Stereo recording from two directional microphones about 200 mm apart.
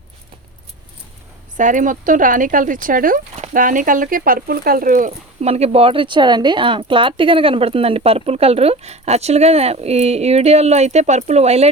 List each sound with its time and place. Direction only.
1.5 s speech: 40° right (ahead or behind)